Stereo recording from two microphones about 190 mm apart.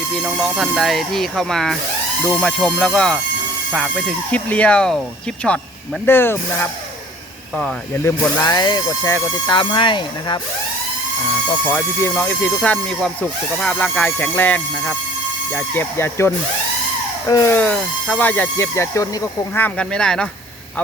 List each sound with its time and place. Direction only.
0.2 s speech: centre (ahead or behind)
8.4 s speech: 20° left (ahead or behind)
11.6 s speech: 15° left (ahead or behind)